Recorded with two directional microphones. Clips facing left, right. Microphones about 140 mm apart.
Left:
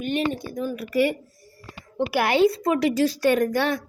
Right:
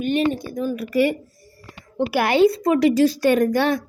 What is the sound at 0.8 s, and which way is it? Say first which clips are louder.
Speech: right 2 dB; 90° right.